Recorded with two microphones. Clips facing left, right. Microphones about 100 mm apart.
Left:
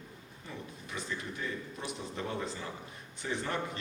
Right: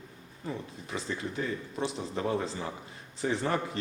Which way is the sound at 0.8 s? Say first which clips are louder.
Right 4 dB; 35° right (ahead or behind).